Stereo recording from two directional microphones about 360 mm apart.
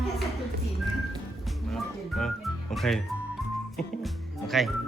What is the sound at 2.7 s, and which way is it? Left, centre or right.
Speech, centre.